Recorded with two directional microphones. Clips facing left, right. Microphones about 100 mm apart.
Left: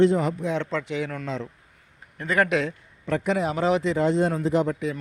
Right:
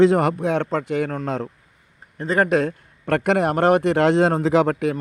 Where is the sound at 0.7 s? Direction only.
45° right (ahead or behind).